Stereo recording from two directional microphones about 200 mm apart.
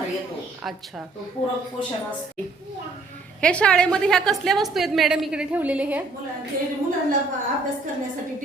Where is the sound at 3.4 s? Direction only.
5° left (ahead or behind).